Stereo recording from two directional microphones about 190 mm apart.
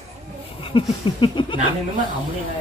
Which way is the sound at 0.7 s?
25° left (ahead or behind).